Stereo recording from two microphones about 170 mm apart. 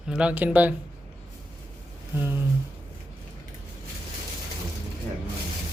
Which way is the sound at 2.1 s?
15° right (ahead or behind).